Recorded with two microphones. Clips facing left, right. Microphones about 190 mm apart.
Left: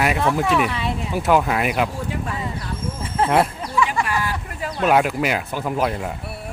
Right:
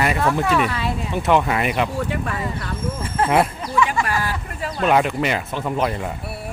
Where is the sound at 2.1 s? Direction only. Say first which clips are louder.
Right 2 dB; 65° right (ahead or behind).